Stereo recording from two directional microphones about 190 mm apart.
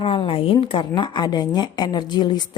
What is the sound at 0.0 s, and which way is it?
A woman's voice, 30° left (ahead or behind).